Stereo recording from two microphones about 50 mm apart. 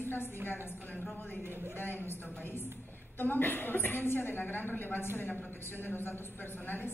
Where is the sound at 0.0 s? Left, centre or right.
Left.